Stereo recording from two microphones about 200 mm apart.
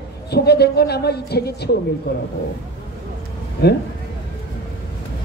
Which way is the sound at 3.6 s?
55° left (ahead or behind).